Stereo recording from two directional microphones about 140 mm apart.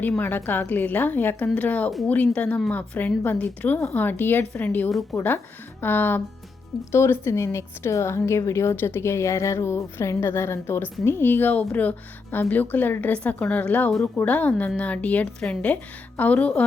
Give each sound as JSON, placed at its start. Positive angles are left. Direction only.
{"t": 0.2, "sound": "a woman's voice", "side_deg": 15}